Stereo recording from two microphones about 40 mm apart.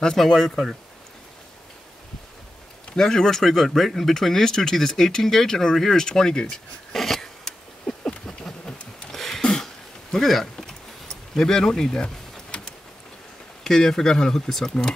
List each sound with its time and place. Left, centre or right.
0.2 s speech: centre
3.0 s speech: centre
6.9 s a sound: centre
7.4 s patter: centre
9.1 s a sound: centre
13.7 s speech: centre